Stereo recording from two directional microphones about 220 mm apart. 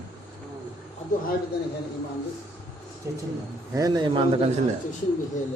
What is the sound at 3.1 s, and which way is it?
A man's voice, 15° right (ahead or behind).